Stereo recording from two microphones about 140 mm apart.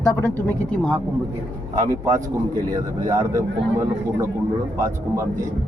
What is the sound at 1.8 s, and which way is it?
A man's voice, 25° right (ahead or behind).